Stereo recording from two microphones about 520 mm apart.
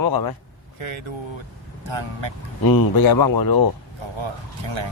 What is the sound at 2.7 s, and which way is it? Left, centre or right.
Speech, left.